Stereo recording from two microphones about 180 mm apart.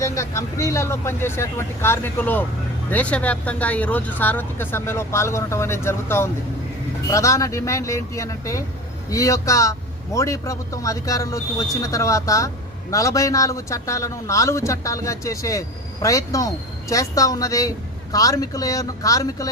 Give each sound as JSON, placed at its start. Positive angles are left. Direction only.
{"t": 0.0, "sound": "a man's voice", "side_deg": 15}